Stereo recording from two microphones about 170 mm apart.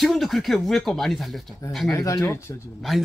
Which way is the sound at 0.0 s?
Centre (ahead or behind).